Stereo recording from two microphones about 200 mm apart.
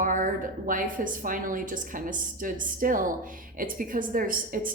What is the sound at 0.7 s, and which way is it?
A woman's voice, 40° right (ahead or behind).